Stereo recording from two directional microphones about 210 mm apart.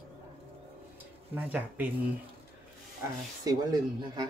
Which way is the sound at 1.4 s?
10° right (ahead or behind).